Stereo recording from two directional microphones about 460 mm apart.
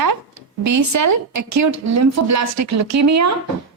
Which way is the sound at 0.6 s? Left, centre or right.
Right.